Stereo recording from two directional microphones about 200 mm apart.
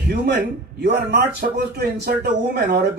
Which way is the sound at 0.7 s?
55° right (ahead or behind).